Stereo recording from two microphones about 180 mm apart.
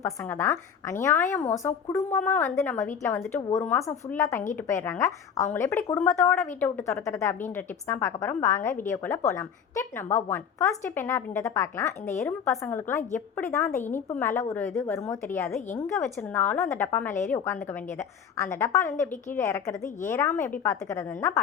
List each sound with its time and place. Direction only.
0.0 s speech: 10° left (ahead or behind)
11.9 s a woman's voice: 40° left (ahead or behind)
12.2 s speech: 5° left (ahead or behind)
15.4 s a woman's voice: centre (ahead or behind)
18.6 s speech: 15° left (ahead or behind)